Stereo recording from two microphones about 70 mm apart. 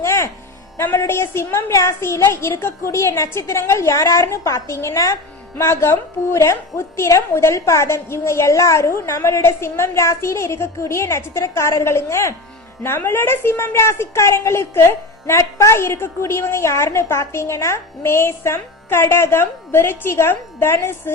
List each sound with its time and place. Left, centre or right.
0.0 s music: left
0.8 s a woman's voice: left